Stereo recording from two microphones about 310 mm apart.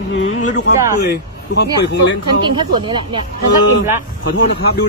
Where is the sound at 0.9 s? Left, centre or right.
Left.